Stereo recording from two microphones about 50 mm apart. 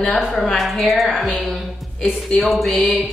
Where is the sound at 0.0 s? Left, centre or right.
Centre.